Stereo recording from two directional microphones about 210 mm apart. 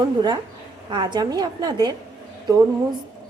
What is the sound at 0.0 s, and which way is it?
A woman's voice, 20° right (ahead or behind).